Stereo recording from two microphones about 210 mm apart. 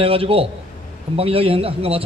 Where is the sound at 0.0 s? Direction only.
25° right (ahead or behind).